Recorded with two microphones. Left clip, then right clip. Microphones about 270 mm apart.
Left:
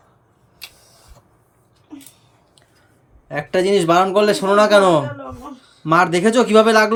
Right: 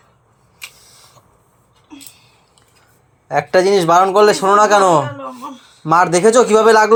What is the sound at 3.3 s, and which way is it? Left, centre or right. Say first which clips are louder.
A man's voice: right 5 dB; centre.